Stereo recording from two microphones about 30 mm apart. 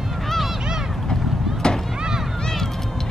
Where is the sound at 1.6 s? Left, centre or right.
Left.